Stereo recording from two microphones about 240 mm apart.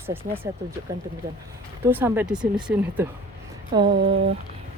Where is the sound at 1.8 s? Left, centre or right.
Centre.